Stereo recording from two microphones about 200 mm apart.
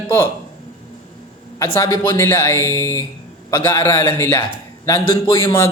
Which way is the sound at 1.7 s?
15° left (ahead or behind).